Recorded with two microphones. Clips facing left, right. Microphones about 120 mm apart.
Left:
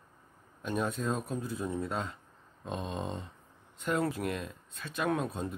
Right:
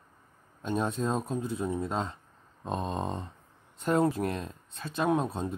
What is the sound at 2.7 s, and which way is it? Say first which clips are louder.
Speech: right 4 dB; 40° right (ahead or behind).